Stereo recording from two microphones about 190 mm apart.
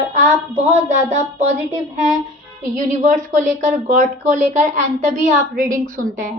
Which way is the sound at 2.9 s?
40° right (ahead or behind).